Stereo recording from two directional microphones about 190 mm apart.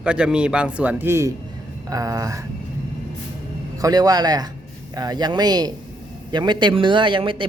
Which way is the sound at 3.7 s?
20° right (ahead or behind).